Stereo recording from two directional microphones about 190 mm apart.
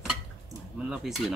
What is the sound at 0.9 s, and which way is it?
Cutlery, centre (ahead or behind).